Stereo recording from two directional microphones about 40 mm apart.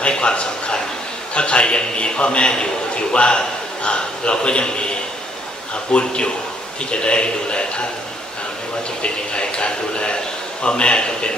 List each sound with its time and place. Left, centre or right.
0.0 s a sound: left
1.3 s a man's voice: left
9.0 s a man's voice: left